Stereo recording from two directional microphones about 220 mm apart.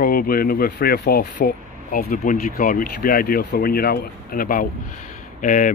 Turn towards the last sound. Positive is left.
turn(degrees=35)  # may be behind; listen again after turning